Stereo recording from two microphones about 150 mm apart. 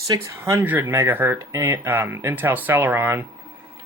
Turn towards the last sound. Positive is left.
turn(degrees=-15)  # may be behind; listen again after turning